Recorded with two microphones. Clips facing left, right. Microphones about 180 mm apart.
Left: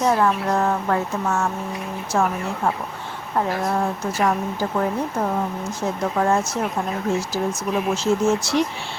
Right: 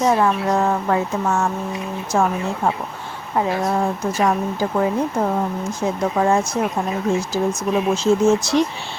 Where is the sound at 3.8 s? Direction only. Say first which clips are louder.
Right 2 dB; 15° right (ahead or behind).